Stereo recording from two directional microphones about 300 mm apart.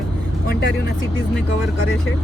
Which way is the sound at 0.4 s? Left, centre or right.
Left.